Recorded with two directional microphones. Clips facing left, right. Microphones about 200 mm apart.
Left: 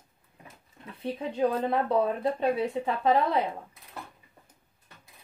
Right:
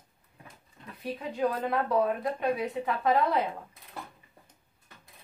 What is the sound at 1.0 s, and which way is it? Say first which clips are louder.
Speech: left 3 dB; 30° left (ahead or behind).